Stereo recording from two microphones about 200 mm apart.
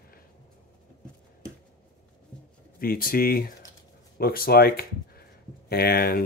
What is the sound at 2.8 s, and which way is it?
Speech, 45° left (ahead or behind).